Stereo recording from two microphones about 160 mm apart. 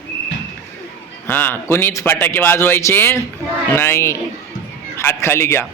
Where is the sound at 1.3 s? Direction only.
10° left (ahead or behind).